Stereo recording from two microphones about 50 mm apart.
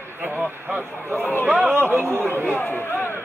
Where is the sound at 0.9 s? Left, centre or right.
Left.